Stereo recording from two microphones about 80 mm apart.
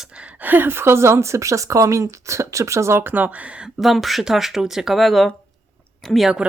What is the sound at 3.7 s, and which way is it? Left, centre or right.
Speech, centre.